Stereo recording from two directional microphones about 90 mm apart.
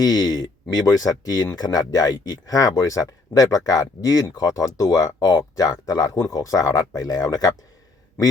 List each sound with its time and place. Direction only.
0.0 s speech: 45° left (ahead or behind)